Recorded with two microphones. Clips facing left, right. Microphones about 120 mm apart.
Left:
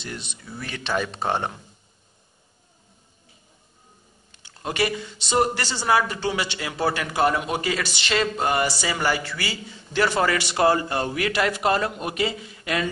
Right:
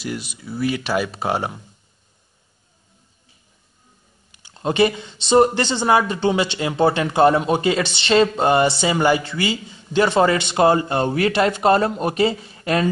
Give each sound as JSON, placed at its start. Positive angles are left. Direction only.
{"t": 0.0, "sound": "speech", "side_deg": -5}
{"t": 4.6, "sound": "speech", "side_deg": -25}